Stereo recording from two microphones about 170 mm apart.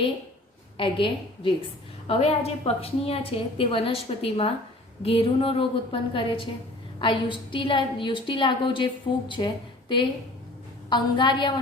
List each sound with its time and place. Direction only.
0.8 s a woman's voice: 30° left (ahead or behind)
10.8 s a woman's voice: 25° left (ahead or behind)